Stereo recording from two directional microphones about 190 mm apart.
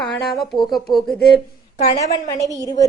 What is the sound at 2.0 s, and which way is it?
Speech, 15° left (ahead or behind).